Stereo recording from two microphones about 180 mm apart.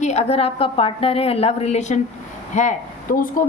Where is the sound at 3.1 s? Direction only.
55° left (ahead or behind).